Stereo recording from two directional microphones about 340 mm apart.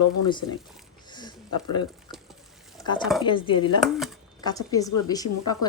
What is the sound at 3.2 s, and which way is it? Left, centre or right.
Speech, centre.